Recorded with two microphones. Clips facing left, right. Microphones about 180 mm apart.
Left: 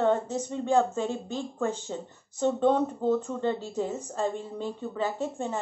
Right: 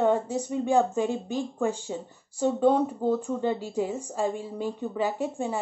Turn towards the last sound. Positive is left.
turn(degrees=-10)  # may be behind; listen again after turning